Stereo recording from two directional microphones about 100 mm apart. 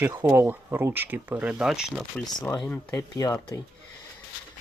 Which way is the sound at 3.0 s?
35° left (ahead or behind).